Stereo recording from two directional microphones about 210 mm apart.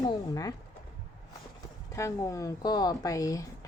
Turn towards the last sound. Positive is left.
turn(degrees=15)  # may be behind; listen again after turning